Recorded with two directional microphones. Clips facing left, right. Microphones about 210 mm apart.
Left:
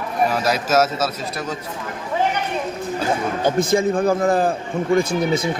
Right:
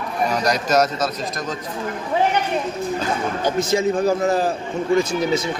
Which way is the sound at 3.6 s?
55° left (ahead or behind).